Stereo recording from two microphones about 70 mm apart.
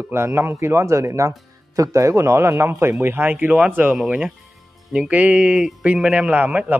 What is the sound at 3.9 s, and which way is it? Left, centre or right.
A man's voice, centre.